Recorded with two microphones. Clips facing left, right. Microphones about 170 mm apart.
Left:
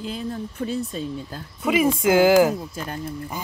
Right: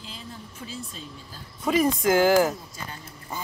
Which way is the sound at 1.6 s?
5° left (ahead or behind).